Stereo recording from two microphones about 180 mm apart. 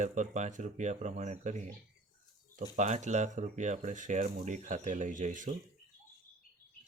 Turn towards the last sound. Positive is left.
turn(degrees=-45)  # may be behind; listen again after turning